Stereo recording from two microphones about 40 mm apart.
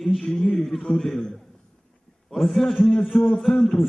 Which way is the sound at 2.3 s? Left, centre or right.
Centre.